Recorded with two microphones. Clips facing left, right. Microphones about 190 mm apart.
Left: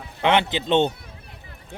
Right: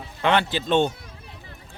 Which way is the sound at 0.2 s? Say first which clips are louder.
Left 1 dB; 20° left (ahead or behind).